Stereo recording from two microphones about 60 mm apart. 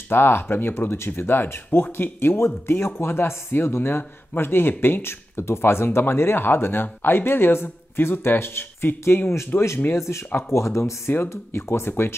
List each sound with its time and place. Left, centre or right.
0.1 s speech: left